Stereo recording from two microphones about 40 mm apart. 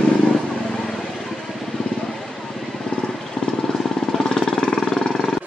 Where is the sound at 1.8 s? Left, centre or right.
Centre.